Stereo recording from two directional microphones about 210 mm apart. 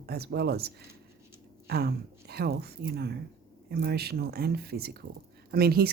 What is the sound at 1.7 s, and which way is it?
Speech, 50° right (ahead or behind).